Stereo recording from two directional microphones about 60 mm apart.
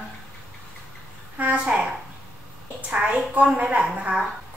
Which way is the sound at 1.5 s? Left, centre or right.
Centre.